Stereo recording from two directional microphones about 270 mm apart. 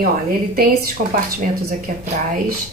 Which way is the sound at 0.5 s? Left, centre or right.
Right.